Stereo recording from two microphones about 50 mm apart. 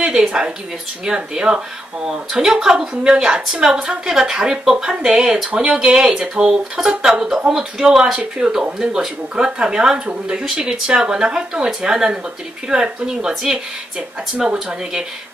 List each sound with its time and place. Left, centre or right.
0.0 s speech: centre
14.5 s speech: centre